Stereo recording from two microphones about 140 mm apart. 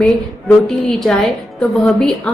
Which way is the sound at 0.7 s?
5° left (ahead or behind).